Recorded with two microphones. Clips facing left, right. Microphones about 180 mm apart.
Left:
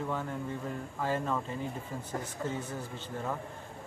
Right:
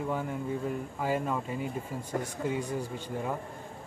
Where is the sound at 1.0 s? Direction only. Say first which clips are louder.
Right 1 dB; 10° right (ahead or behind).